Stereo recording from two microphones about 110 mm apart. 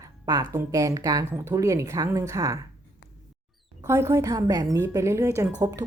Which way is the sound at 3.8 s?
25° right (ahead or behind).